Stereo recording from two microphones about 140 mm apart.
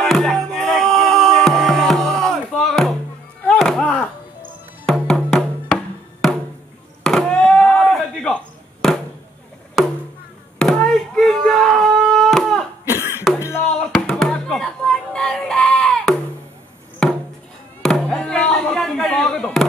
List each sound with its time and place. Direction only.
0.0 s music: centre (ahead or behind)
3.4 s chop: 5° left (ahead or behind)
4.8 s music: 5° left (ahead or behind)
7.0 s chop: 5° left (ahead or behind)
10.6 s a sound: 5° left (ahead or behind)
12.9 s cough: 15° right (ahead or behind)
13.4 s knock: 20° left (ahead or behind)
13.7 s music: 5° left (ahead or behind)
17.8 s a sound: 5° left (ahead or behind)